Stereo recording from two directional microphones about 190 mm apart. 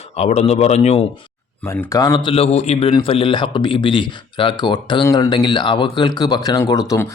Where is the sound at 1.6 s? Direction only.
15° left (ahead or behind).